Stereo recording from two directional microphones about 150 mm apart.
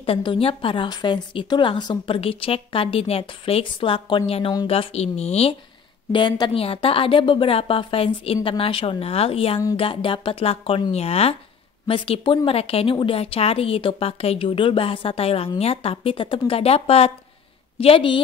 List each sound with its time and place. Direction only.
0.0 s a woman's voice: 35° left (ahead or behind)
6.1 s a woman's voice: 30° left (ahead or behind)